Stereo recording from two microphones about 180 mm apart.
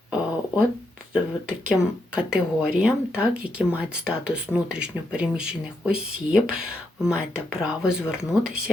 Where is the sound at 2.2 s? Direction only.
5° right (ahead or behind).